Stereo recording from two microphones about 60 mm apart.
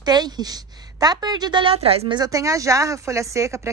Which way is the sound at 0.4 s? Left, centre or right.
Right.